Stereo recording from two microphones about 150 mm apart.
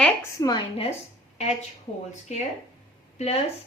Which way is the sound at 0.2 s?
25° left (ahead or behind).